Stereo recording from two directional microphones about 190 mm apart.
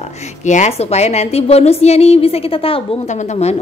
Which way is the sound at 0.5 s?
35° left (ahead or behind).